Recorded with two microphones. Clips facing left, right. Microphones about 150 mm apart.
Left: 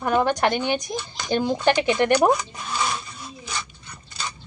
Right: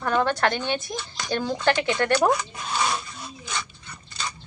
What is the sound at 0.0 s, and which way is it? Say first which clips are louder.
Speech: left 2 dB; 15° left (ahead or behind).